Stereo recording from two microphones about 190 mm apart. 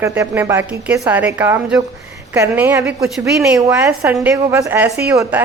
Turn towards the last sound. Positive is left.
turn(degrees=-10)  # may be behind; listen again after turning